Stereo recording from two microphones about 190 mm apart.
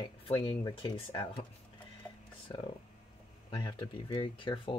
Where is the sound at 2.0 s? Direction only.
5° left (ahead or behind).